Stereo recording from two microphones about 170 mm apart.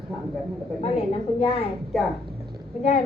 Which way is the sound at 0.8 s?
35° left (ahead or behind).